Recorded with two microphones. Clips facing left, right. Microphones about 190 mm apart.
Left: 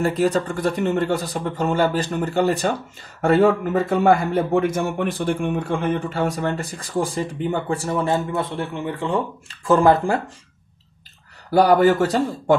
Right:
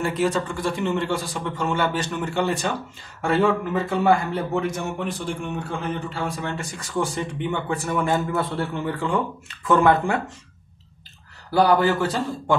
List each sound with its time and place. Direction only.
0.0 s a man's voice: 40° left (ahead or behind)
4.7 s a man's voice: 60° left (ahead or behind)
6.4 s speech: 35° left (ahead or behind)
11.5 s a man's voice: 45° left (ahead or behind)